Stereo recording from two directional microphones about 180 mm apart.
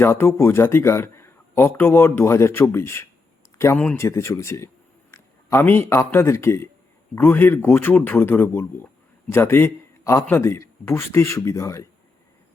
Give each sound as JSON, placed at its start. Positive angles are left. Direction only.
{"t": 0.0, "sound": "speech", "side_deg": 15}
{"t": 5.1, "sound": "a sound", "side_deg": 15}
{"t": 5.9, "sound": "speech", "side_deg": 15}